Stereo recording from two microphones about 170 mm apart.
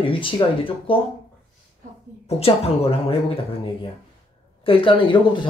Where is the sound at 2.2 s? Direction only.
35° left (ahead or behind).